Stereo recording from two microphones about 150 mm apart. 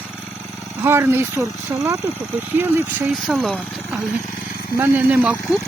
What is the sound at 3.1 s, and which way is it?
Speech, centre (ahead or behind).